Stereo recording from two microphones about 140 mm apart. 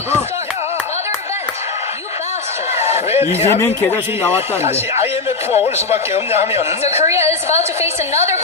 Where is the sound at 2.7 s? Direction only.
50° left (ahead or behind).